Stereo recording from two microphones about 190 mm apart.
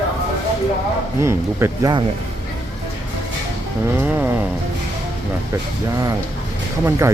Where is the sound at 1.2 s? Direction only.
15° right (ahead or behind).